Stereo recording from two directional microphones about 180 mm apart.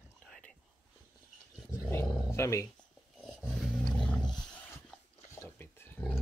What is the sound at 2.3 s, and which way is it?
Speech, 15° left (ahead or behind).